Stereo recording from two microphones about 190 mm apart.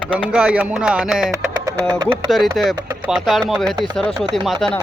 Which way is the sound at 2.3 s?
Centre (ahead or behind).